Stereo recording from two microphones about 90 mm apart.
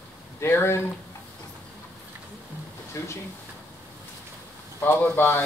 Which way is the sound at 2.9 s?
30° left (ahead or behind).